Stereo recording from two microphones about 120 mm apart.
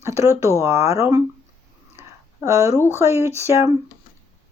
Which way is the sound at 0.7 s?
55° left (ahead or behind).